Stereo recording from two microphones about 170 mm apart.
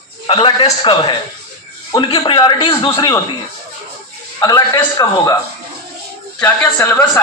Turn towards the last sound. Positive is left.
turn(degrees=10)  # may be behind; listen again after turning